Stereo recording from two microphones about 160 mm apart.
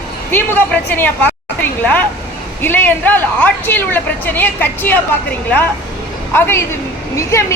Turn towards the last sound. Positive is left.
turn(degrees=15)  # may be behind; listen again after turning